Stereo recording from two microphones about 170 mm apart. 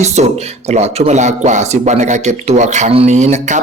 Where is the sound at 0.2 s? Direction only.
40° right (ahead or behind).